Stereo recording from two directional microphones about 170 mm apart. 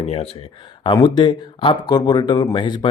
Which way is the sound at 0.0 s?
35° left (ahead or behind).